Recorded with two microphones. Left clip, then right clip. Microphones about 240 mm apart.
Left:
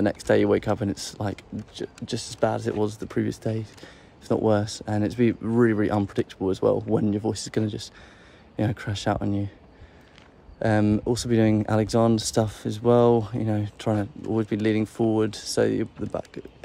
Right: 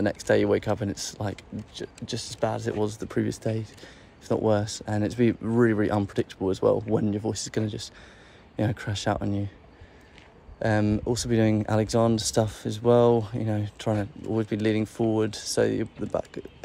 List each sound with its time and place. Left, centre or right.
0.0 s speech: centre
10.6 s speech: centre